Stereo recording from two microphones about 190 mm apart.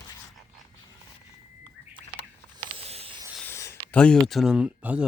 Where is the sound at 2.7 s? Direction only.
30° right (ahead or behind).